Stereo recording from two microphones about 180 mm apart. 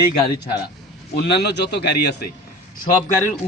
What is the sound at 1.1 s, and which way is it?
A man's voice, 65° left (ahead or behind).